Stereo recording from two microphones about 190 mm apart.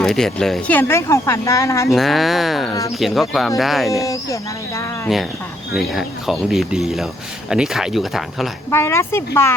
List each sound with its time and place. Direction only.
0.0 s speech: centre (ahead or behind)
1.9 s speech: centre (ahead or behind)
4.0 s speech: 15° left (ahead or behind)
5.7 s speech: centre (ahead or behind)
8.7 s speech: 15° left (ahead or behind)